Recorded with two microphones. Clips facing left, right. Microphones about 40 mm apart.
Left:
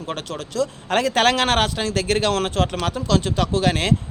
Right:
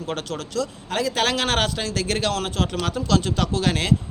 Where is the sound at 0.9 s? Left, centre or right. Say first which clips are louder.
Left 6 dB; left.